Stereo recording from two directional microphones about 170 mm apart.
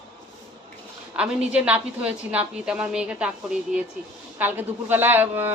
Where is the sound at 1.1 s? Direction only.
5° right (ahead or behind).